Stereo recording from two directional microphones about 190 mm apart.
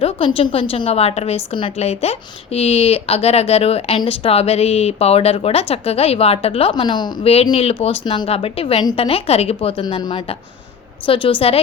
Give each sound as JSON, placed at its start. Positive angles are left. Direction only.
{"t": 0.0, "sound": "a woman's voice", "side_deg": 30}
{"t": 11.0, "sound": "a woman's voice", "side_deg": 25}